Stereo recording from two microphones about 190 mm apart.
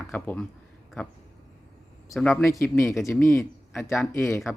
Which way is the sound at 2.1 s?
5° left (ahead or behind).